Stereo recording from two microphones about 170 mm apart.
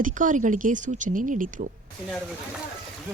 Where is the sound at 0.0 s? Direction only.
50° right (ahead or behind).